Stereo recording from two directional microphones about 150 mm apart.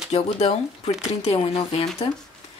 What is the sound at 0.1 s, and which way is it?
A woman's voice, 40° left (ahead or behind).